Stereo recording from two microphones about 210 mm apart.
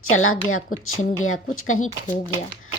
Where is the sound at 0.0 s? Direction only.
75° left (ahead or behind).